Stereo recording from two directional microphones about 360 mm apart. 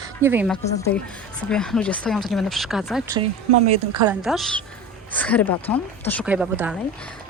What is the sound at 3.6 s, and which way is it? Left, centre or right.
Speech, centre.